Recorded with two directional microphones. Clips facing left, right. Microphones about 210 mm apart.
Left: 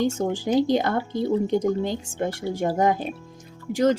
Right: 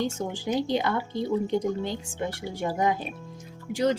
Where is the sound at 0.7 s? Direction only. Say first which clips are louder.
Left 4 dB; 45° left (ahead or behind).